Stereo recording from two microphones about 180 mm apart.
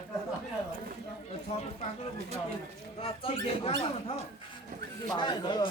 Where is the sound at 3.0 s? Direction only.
30° left (ahead or behind).